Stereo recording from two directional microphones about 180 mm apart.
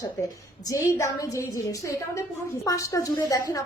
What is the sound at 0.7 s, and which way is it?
A woman's voice, 20° left (ahead or behind).